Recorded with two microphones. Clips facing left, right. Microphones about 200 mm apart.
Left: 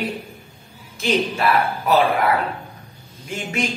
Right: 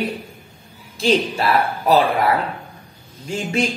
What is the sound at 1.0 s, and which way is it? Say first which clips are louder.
Music: right 2 dB; 30° right (ahead or behind).